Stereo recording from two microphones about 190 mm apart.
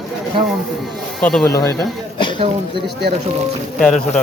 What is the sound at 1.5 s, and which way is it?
Speech, 15° left (ahead or behind).